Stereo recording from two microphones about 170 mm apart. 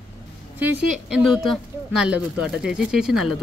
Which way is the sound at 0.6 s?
5° right (ahead or behind).